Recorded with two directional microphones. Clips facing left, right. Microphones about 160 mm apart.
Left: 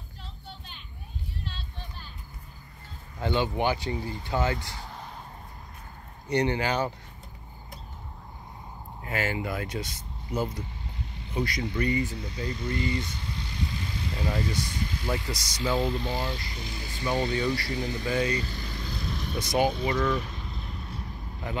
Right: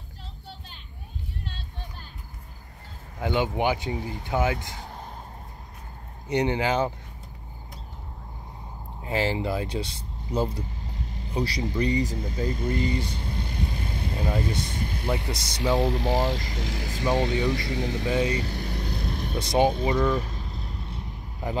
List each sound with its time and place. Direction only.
1.4 s music: 50° right (ahead or behind)
3.2 s speech: 15° right (ahead or behind)
6.3 s speech: 15° right (ahead or behind)
9.0 s speech: 30° right (ahead or behind); by 12.7 s 50° right (ahead or behind)
12.9 s speech: 30° right (ahead or behind)
13.2 s vehicle: 55° right (ahead or behind)
14.4 s speech: 55° right (ahead or behind); by 17.1 s 90° right
17.7 s speech: 80° right
18.0 s speech: 20° right (ahead or behind)
18.4 s vehicle: 65° right (ahead or behind)
19.3 s speech: 25° right (ahead or behind)
19.9 s speech: 15° right (ahead or behind)
20.2 s vehicle: 40° right (ahead or behind)